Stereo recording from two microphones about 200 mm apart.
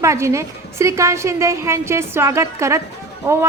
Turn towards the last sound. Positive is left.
turn(degrees=-10)  # may be behind; listen again after turning